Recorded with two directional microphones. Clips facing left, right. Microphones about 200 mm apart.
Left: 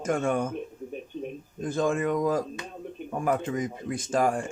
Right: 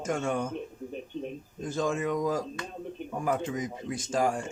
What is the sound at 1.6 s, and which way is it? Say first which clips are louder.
Speech: left 3 dB; 55° left (ahead or behind).